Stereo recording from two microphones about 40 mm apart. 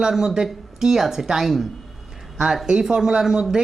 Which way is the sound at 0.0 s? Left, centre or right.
Centre.